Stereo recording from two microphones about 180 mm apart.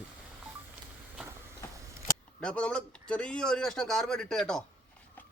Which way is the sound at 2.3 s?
5° left (ahead or behind).